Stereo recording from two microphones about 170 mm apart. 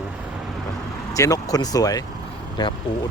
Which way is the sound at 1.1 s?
20° left (ahead or behind).